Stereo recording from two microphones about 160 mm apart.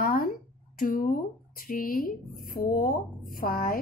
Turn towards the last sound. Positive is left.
turn(degrees=65)  # may be behind; listen again after turning